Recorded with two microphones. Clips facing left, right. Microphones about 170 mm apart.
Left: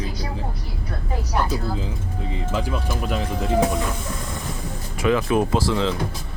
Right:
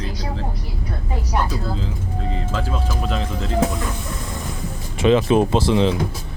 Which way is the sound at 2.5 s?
15° left (ahead or behind).